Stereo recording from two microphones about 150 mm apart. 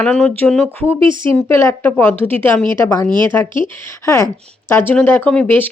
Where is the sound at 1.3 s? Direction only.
15° left (ahead or behind).